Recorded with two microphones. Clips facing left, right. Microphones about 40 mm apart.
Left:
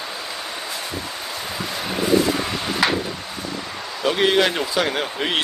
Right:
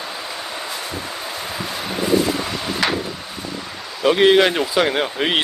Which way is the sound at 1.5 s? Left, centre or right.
Centre.